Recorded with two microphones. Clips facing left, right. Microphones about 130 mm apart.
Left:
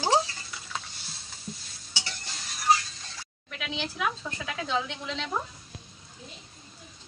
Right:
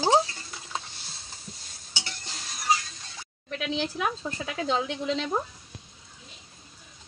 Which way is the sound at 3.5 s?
35° right (ahead or behind).